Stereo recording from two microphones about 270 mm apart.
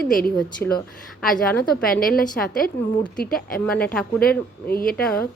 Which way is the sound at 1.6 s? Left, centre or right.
Left.